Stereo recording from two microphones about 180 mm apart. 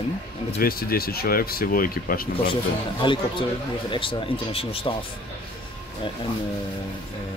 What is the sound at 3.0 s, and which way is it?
Speech, 25° left (ahead or behind).